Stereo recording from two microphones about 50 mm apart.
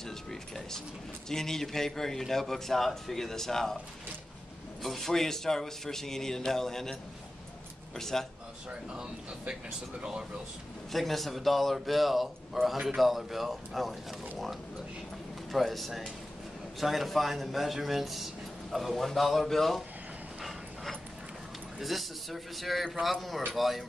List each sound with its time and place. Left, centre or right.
0.0 s a man's voice: centre
4.8 s a man's voice: centre
10.9 s a man's voice: centre
15.5 s a man's voice: centre
21.7 s a man's voice: centre